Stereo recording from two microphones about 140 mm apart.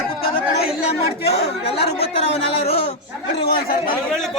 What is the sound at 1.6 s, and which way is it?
Speech, 45° left (ahead or behind).